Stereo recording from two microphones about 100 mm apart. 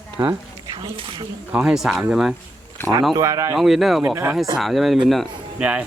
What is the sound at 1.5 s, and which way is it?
Speech, 5° right (ahead or behind).